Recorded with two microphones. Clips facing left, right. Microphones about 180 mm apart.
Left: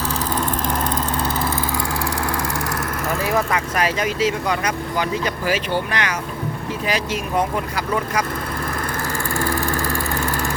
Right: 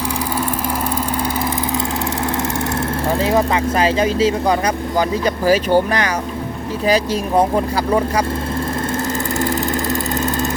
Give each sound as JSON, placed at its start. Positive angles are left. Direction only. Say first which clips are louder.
{"t": 3.1, "sound": "speech", "louder": "right 4 dB", "side_deg": -25}
{"t": 9.4, "sound": "vehicle", "louder": "right 2 dB", "side_deg": -20}